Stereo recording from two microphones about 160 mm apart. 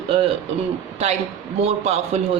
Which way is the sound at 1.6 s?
40° right (ahead or behind).